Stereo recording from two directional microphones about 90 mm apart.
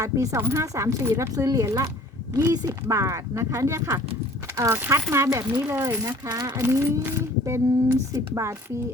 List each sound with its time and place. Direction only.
0.0 s speech: 35° right (ahead or behind)
5.7 s speech: 25° right (ahead or behind)
6.2 s speech: 50° right (ahead or behind)
6.6 s speech: 30° right (ahead or behind)